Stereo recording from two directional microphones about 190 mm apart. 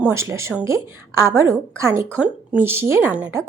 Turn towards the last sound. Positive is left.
turn(degrees=-5)  # may be behind; listen again after turning